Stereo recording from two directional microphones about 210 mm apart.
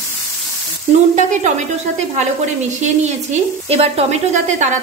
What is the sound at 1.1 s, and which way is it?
A woman's voice, 35° right (ahead or behind).